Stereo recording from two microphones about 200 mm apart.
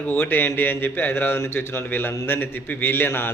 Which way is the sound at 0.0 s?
10° left (ahead or behind).